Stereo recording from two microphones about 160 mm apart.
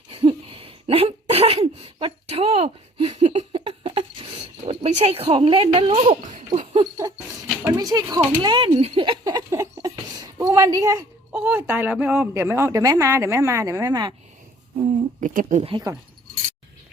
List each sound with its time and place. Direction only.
0.1 s a sound: 35° right (ahead or behind)
7.7 s speech: 25° right (ahead or behind)
9.2 s a sound: 20° right (ahead or behind)
10.4 s a woman's voice: 20° right (ahead or behind)
11.3 s a woman's voice: 10° right (ahead or behind)
15.2 s speech: 55° right (ahead or behind)
15.6 s speech: 30° right (ahead or behind)